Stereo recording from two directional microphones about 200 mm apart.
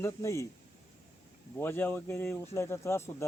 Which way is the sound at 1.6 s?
10° left (ahead or behind).